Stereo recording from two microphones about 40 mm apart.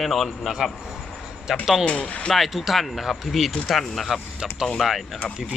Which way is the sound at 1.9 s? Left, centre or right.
Centre.